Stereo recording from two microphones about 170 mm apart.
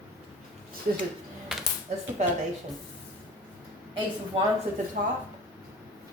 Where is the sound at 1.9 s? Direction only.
40° right (ahead or behind).